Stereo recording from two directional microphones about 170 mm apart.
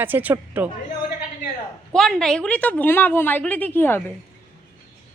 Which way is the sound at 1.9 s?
5° left (ahead or behind).